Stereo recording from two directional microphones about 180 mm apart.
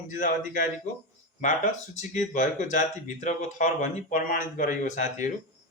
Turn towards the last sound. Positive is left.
turn(degrees=45)  # may be behind; listen again after turning